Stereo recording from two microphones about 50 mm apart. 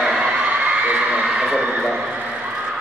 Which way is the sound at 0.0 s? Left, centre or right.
Centre.